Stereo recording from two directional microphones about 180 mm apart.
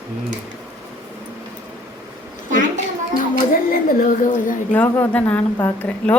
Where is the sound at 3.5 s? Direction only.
50° left (ahead or behind).